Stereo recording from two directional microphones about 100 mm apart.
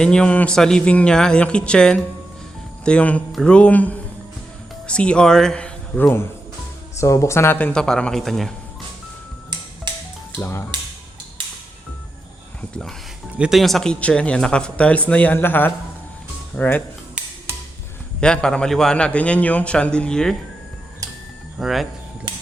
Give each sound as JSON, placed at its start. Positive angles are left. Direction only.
{"t": 0.0, "sound": "a man's voice", "side_deg": 10}
{"t": 6.9, "sound": "speech", "side_deg": 30}
{"t": 7.7, "sound": "a man's voice", "side_deg": 5}
{"t": 10.3, "sound": "speech", "side_deg": 25}
{"t": 13.5, "sound": "a man's voice", "side_deg": 0}
{"t": 18.2, "sound": "a man's voice", "side_deg": 10}
{"t": 21.6, "sound": "a man's voice", "side_deg": 0}